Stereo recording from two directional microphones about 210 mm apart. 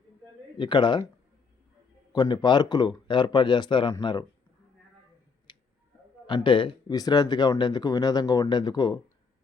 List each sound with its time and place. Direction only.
0.5 s speech: 20° left (ahead or behind)
2.1 s speech: 20° left (ahead or behind)
5.5 s a sound: 20° left (ahead or behind)
6.2 s speech: 25° left (ahead or behind)